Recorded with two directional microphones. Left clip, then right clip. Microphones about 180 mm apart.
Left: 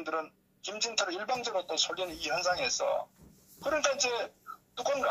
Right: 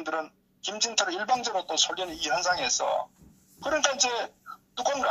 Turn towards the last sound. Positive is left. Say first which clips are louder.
# right 3 dB
turn(degrees=-20)  # may be behind; listen again after turning